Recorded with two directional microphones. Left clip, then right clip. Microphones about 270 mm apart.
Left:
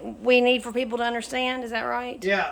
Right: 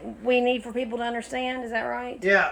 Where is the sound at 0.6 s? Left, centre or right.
Left.